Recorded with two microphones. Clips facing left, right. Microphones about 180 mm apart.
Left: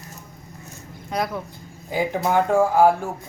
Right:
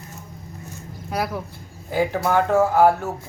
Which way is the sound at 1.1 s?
5° right (ahead or behind).